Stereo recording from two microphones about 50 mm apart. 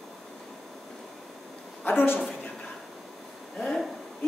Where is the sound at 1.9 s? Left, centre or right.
Left.